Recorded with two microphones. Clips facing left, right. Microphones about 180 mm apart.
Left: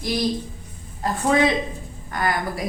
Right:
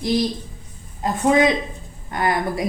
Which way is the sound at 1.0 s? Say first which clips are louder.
Right 3 dB; 20° right (ahead or behind).